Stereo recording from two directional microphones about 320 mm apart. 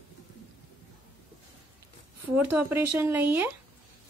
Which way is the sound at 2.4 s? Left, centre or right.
Centre.